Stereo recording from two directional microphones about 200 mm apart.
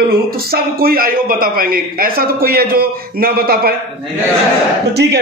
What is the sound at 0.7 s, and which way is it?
A man's voice, 45° right (ahead or behind).